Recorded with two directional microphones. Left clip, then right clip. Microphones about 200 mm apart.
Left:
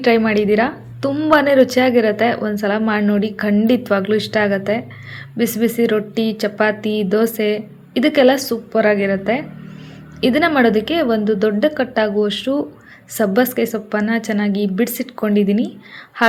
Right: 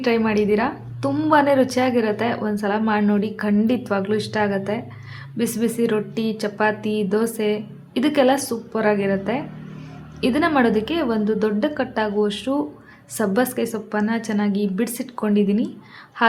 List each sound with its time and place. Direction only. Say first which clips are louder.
0.0 s a woman's voice: left 5 dB; 15° left (ahead or behind)